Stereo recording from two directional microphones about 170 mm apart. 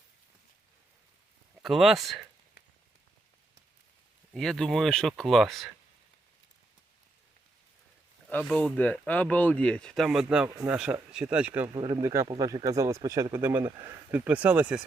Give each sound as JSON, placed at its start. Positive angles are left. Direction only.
{"t": 1.6, "sound": "speech", "side_deg": 0}
{"t": 4.4, "sound": "speech", "side_deg": 5}
{"t": 8.3, "sound": "speech", "side_deg": 5}
{"t": 11.7, "sound": "speech", "side_deg": -30}
{"t": 12.0, "sound": "speech", "side_deg": -20}